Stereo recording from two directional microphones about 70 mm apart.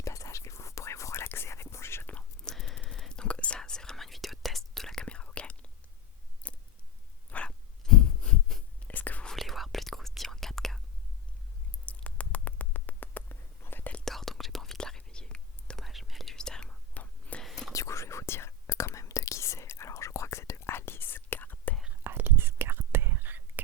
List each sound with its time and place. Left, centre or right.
0.0 s whispering: left
2.4 s whispering: centre
6.4 s a sound: centre
7.3 s dog: centre
8.9 s whispering: left
9.2 s whispering: centre
11.9 s a sound: left
14.0 s whispering: centre
15.8 s whispering: centre
16.9 s whispering: left
17.4 s whispering: centre
17.7 s whispering: left
22.0 s whispering: right